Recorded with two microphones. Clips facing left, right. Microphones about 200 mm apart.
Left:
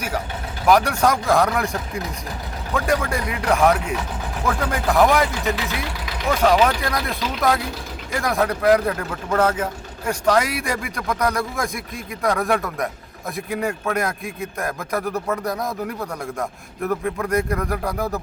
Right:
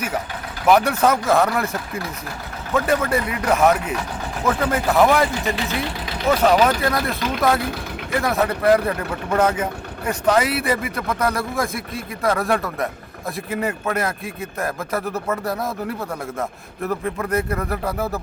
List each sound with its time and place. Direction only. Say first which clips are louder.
0.7 s speech: right 1 dB; 5° right (ahead or behind)
6.4 s speech: even; 5° right (ahead or behind)
7.6 s speech: right 4 dB; 60° right (ahead or behind)
8.2 s speech: even; centre (ahead or behind)